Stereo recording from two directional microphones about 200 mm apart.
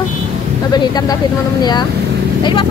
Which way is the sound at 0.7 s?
20° left (ahead or behind).